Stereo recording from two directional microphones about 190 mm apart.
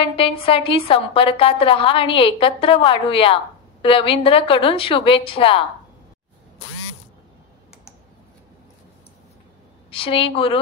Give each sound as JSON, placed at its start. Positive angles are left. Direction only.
{"t": 0.0, "sound": "a woman's voice", "side_deg": 30}
{"t": 9.8, "sound": "a woman's voice", "side_deg": 30}